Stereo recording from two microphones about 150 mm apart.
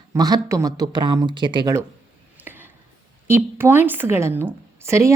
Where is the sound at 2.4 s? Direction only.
15° right (ahead or behind).